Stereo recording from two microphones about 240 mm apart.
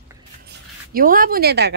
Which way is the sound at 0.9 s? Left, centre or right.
Right.